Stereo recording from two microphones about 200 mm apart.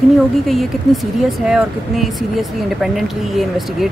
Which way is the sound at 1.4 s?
Centre (ahead or behind).